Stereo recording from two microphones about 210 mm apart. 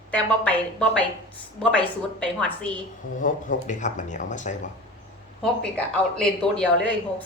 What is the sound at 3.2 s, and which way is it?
Speech, 35° left (ahead or behind).